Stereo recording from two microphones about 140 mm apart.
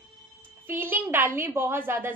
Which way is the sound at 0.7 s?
15° right (ahead or behind).